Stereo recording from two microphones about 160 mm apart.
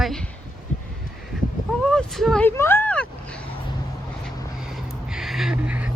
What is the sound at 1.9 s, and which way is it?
Speech, centre (ahead or behind).